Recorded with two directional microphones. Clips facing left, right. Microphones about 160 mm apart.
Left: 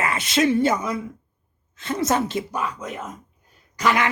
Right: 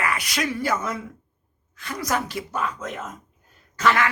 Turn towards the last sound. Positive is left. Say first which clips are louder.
# even
turn(degrees=15)  # may be behind; listen again after turning